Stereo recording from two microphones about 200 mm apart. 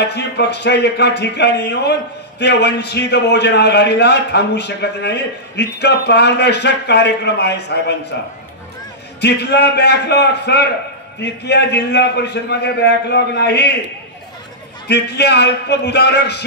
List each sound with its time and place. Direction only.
0.0 s a man's voice: 60° left (ahead or behind)
9.2 s a man's voice: 55° left (ahead or behind)
14.9 s a man's voice: 55° left (ahead or behind)